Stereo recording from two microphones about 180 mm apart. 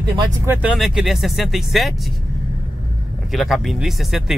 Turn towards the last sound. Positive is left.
turn(degrees=0)  # may be behind; listen again after turning